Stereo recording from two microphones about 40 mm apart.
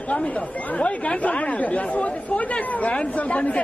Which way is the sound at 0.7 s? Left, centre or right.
Left.